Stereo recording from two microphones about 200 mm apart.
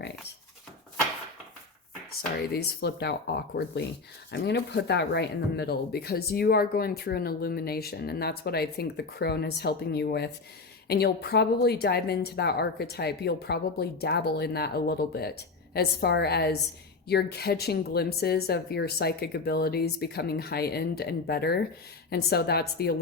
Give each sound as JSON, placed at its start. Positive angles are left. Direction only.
{"t": 2.5, "sound": "speech", "side_deg": 55}